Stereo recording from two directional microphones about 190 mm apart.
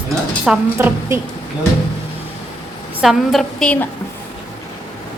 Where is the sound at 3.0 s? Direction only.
Centre (ahead or behind).